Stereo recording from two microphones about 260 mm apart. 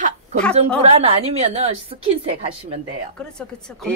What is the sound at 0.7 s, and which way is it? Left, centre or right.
Speech, right.